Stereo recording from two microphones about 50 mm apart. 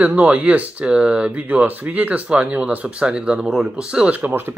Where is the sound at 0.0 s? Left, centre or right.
Right.